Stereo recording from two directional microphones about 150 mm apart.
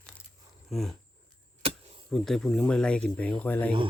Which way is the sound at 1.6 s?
40° right (ahead or behind).